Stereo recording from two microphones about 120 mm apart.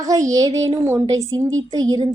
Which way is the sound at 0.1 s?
30° right (ahead or behind).